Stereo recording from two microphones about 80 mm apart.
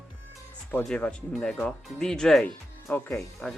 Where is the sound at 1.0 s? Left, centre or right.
Centre.